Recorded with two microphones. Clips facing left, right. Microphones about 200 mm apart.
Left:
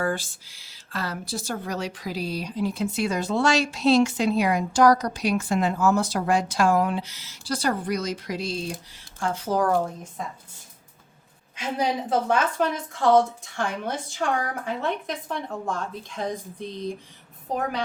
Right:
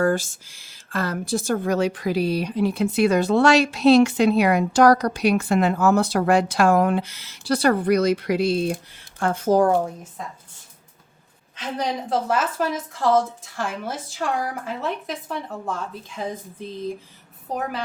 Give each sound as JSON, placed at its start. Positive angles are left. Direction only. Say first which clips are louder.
{"t": 0.0, "sound": "a woman's voice", "louder": "right 6 dB", "side_deg": -45}
{"t": 9.7, "sound": "a woman's voice", "louder": "right 2 dB", "side_deg": -5}
{"t": 11.5, "sound": "a woman's voice", "louder": "left 1 dB", "side_deg": 10}